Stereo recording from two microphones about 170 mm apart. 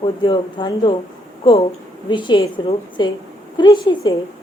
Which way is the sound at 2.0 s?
25° left (ahead or behind).